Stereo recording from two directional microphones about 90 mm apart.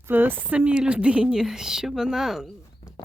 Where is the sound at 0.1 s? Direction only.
20° right (ahead or behind); by 2.9 s 5° right (ahead or behind).